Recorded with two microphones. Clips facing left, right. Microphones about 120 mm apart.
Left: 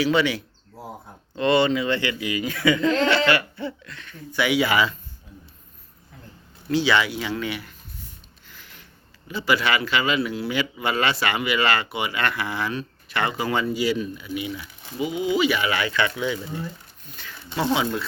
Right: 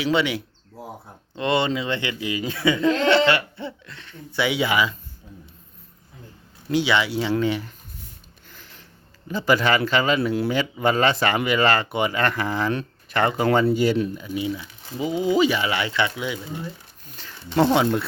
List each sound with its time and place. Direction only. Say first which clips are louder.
0.0 s speech: left 1 dB; 25° right (ahead or behind)
6.7 s speech: even; 20° right (ahead or behind)
7.2 s speech: right 6 dB; 30° right (ahead or behind)
8.4 s a sound: right 1 dB; 40° right (ahead or behind)
9.2 s speech: right 3 dB; 40° right (ahead or behind)
14.2 s speech: right 3 dB; 30° right (ahead or behind)
17.5 s speech: right 5 dB; 50° right (ahead or behind)